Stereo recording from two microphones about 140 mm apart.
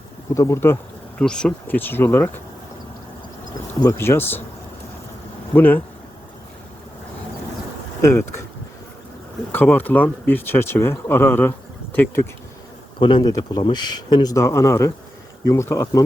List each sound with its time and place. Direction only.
0.3 s speech: 20° left (ahead or behind)
1.2 s speech: 5° left (ahead or behind)
3.8 s speech: 20° left (ahead or behind)
5.5 s speech: 15° left (ahead or behind)
8.0 s speech: 15° left (ahead or behind)
9.5 s speech: 15° left (ahead or behind)
13.0 s speech: 35° left (ahead or behind)